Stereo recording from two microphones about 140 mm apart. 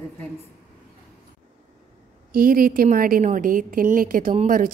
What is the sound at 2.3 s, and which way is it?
A woman's voice, 90° right.